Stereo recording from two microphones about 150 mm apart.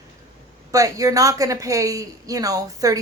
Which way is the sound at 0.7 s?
20° right (ahead or behind).